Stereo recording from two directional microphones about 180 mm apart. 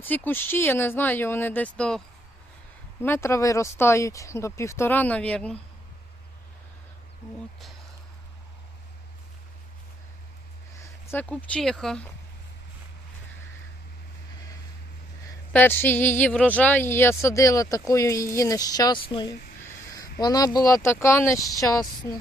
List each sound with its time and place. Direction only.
0.0 s speech: 10° left (ahead or behind)
3.0 s speech: 15° left (ahead or behind)
11.0 s speech: 10° left (ahead or behind)
15.3 s speech: 10° left (ahead or behind)